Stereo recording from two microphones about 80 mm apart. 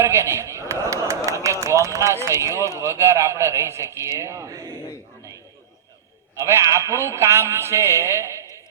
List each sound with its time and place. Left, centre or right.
0.0 s speech: right
6.3 s a man's voice: right